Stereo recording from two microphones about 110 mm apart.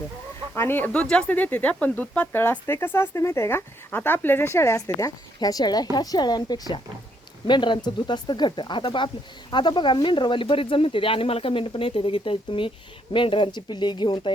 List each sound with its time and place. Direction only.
0.5 s speech: 20° left (ahead or behind)
0.9 s speech: 10° left (ahead or behind); by 14.3 s 45° left (ahead or behind)